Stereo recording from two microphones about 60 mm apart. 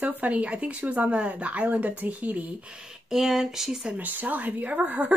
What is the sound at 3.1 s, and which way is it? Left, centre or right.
Speech, centre.